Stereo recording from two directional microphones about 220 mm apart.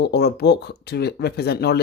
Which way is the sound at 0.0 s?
45° left (ahead or behind).